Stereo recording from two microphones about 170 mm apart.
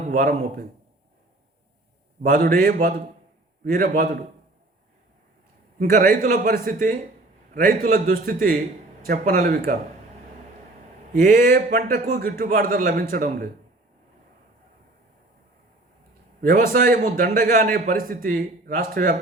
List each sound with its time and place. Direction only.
0.0 s speech: 50° right (ahead or behind)
2.3 s a man's voice: 55° right (ahead or behind)
5.8 s a man's voice: 55° right (ahead or behind)
11.5 s a man's voice: 55° right (ahead or behind)
16.4 s a man's voice: 55° right (ahead or behind)